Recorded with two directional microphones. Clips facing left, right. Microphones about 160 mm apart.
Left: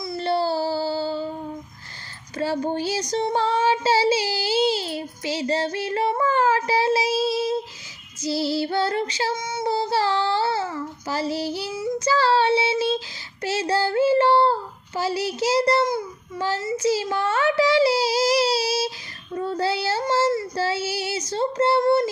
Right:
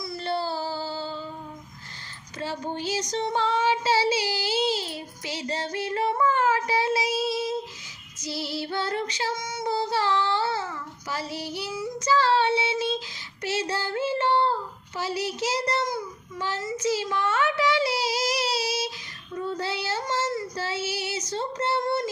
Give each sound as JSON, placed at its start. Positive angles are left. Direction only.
{"t": 0.0, "sound": "a sound", "side_deg": 30}
{"t": 2.4, "sound": "speech", "side_deg": 35}
{"t": 3.1, "sound": "child singing", "side_deg": 35}